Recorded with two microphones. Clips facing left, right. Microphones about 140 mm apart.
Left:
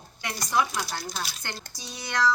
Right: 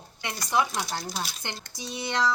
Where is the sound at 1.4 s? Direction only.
25° right (ahead or behind).